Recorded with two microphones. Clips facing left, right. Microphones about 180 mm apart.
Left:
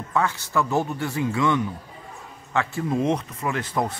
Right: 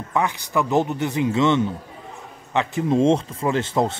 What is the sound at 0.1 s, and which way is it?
A man's voice, 15° right (ahead or behind).